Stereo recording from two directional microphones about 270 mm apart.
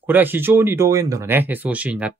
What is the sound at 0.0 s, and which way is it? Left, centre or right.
Speech, centre.